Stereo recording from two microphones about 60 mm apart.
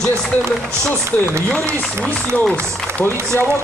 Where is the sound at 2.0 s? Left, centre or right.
Centre.